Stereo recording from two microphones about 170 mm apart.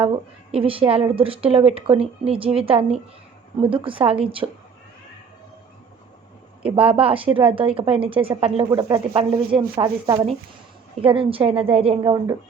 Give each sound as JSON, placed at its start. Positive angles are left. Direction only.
{"t": 0.5, "sound": "a woman's voice", "side_deg": -35}
{"t": 6.7, "sound": "a woman's voice", "side_deg": -35}